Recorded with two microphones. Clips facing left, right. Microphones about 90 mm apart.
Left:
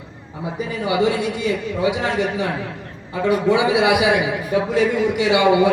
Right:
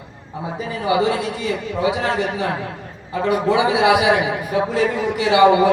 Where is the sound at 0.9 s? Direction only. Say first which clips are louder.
Right 1 dB; 35° right (ahead or behind).